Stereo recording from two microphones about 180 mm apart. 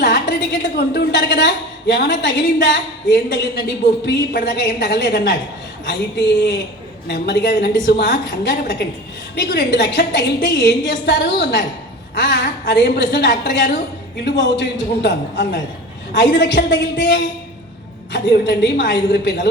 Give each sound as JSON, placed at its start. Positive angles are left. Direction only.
{"t": 0.0, "sound": "a woman's voice", "side_deg": 75}
{"t": 9.3, "sound": "a woman's voice", "side_deg": 65}